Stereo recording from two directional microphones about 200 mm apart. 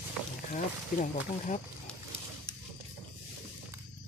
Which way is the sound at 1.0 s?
40° left (ahead or behind).